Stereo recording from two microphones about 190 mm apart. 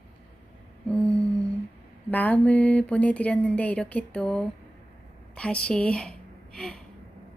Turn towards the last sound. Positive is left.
turn(degrees=5)  # may be behind; listen again after turning